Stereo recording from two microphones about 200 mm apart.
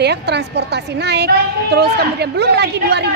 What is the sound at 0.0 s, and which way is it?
A woman's voice, 55° right (ahead or behind).